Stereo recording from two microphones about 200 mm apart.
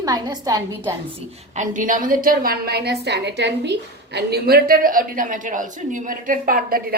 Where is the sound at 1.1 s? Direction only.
35° right (ahead or behind).